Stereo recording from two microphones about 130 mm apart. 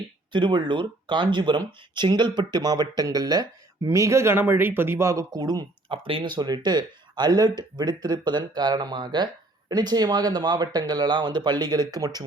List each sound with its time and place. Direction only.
0.3 s speech: 40° right (ahead or behind)
6.1 s speech: 40° right (ahead or behind)